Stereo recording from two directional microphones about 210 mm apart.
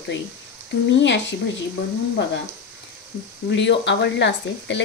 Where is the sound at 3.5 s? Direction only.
55° left (ahead or behind).